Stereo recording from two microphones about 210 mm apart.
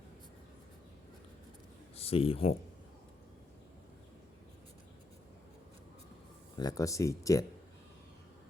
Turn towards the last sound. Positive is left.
turn(degrees=15)  # may be behind; listen again after turning